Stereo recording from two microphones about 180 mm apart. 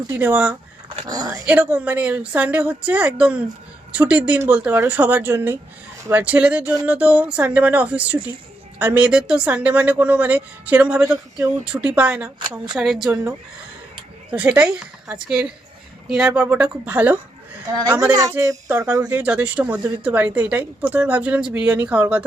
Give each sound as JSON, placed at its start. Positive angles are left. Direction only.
{"t": 0.1, "sound": "a woman's voice", "side_deg": -10}
{"t": 1.0, "sound": "speech", "side_deg": -20}
{"t": 1.5, "sound": "a woman's voice", "side_deg": -10}
{"t": 14.3, "sound": "a woman's voice", "side_deg": -5}